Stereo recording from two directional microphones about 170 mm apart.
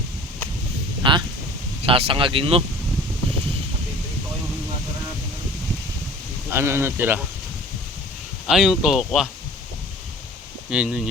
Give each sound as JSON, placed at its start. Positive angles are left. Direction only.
{"t": 1.0, "sound": "a sound", "side_deg": -30}
{"t": 1.9, "sound": "speech", "side_deg": -35}
{"t": 6.5, "sound": "speech", "side_deg": -15}
{"t": 8.4, "sound": "speech", "side_deg": 0}
{"t": 10.7, "sound": "speech", "side_deg": -5}